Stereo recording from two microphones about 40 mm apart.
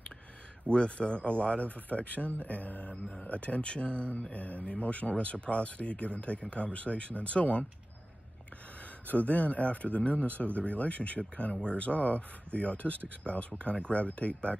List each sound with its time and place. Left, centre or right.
0.7 s speech: left
2.9 s speech: left
3.3 s speech: left
4.1 s speech: left
9.0 s speech: left